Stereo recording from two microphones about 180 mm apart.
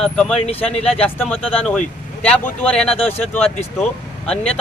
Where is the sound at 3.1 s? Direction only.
10° left (ahead or behind).